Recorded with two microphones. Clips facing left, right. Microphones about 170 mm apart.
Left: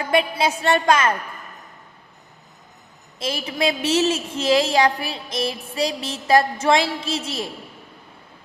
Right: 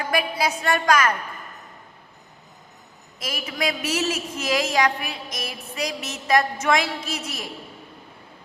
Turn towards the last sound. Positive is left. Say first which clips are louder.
# left 5 dB
turn(degrees=30)  # may be behind; listen again after turning